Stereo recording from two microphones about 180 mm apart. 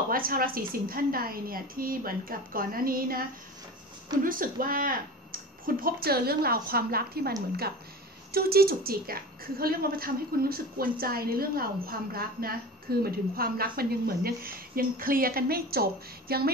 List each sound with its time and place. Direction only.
0.1 s a woman's voice: 55° right (ahead or behind)
4.2 s a woman's voice: 50° right (ahead or behind)